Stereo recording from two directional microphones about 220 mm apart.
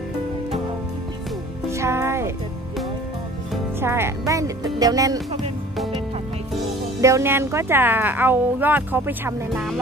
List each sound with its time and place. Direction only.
1.7 s music: 15° right (ahead or behind)
3.8 s speech: 10° right (ahead or behind)
7.0 s speech: 15° right (ahead or behind)